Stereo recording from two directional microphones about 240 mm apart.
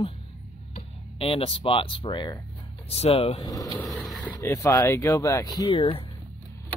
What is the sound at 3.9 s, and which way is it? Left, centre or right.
Speech, centre.